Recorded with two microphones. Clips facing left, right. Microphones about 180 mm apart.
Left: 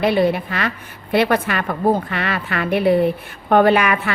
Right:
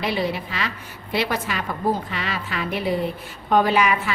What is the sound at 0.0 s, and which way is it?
A woman's voice, 55° left (ahead or behind).